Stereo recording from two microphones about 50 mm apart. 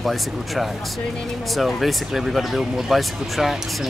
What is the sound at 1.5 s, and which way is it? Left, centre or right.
Speech, centre.